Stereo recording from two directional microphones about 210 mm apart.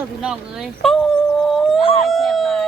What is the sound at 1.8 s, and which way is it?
Howl, 25° left (ahead or behind).